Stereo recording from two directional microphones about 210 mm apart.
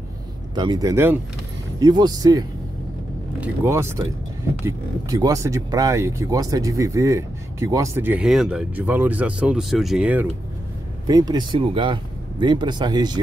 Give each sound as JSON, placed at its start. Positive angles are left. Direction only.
{"t": 0.6, "sound": "speech", "side_deg": -20}
{"t": 11.1, "sound": "speech", "side_deg": -20}